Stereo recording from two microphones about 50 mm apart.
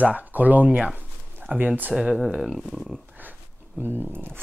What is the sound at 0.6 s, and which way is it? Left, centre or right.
Speech, centre.